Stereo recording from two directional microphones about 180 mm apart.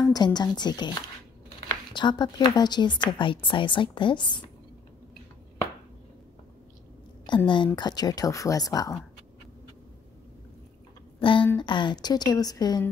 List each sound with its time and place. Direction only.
0.0 s a woman's voice: 20° left (ahead or behind)
2.0 s a woman's voice: 25° left (ahead or behind)
7.2 s a woman's voice: 25° left (ahead or behind)
11.1 s a woman's voice: 25° left (ahead or behind)